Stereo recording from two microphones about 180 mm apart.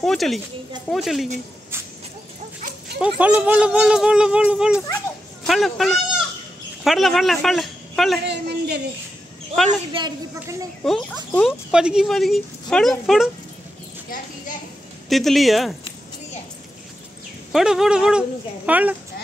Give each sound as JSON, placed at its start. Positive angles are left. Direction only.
{"t": 0.0, "sound": "speech", "side_deg": 0}
{"t": 3.0, "sound": "a woman's voice", "side_deg": -10}
{"t": 8.3, "sound": "a woman's voice", "side_deg": -65}
{"t": 10.8, "sound": "speech", "side_deg": 5}
{"t": 15.0, "sound": "speech", "side_deg": 0}
{"t": 17.5, "sound": "speech", "side_deg": 0}